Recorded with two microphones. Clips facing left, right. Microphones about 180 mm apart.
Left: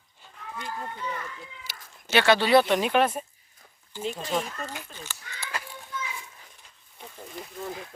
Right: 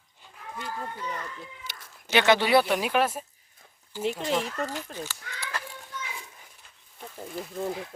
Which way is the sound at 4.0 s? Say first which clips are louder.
Right 2 dB; 65° right (ahead or behind).